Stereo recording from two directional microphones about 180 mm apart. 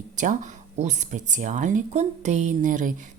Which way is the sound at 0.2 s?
45° right (ahead or behind).